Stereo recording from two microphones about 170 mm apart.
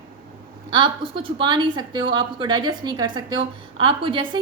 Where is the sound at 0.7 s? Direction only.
30° right (ahead or behind).